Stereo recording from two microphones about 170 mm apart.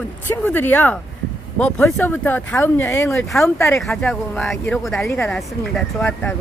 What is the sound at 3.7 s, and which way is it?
Speech, centre (ahead or behind).